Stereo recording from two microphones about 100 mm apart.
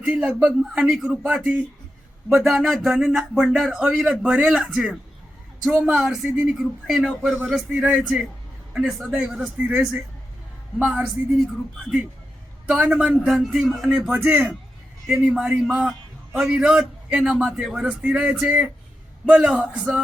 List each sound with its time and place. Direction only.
0.0 s a man's voice: 10° right (ahead or behind)
12.8 s a man's voice: 10° right (ahead or behind)